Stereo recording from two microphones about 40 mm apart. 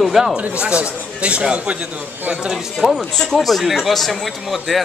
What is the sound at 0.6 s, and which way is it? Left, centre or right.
Speech, right.